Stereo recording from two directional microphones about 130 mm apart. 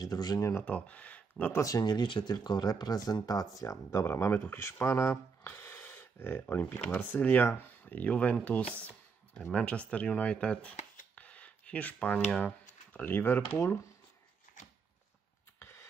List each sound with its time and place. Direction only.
0.0 s speech: 30° left (ahead or behind)
0.7 s speech: 10° left (ahead or behind)
1.6 s speech: 30° left (ahead or behind)
15.6 s a sound: 20° left (ahead or behind)